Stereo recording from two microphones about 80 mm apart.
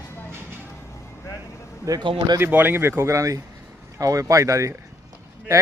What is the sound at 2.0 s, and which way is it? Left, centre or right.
Speech, right.